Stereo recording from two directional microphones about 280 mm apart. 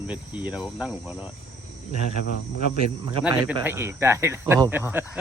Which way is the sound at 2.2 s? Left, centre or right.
Left.